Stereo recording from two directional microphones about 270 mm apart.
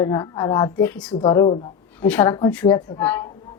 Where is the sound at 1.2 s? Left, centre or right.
Centre.